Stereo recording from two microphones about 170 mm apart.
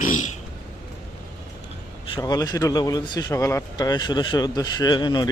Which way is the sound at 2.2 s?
25° left (ahead or behind).